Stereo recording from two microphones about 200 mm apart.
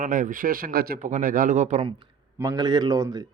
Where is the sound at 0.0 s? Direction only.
40° right (ahead or behind).